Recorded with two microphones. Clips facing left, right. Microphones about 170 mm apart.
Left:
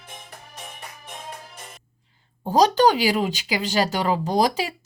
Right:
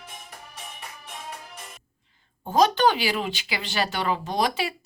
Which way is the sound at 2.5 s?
35° left (ahead or behind).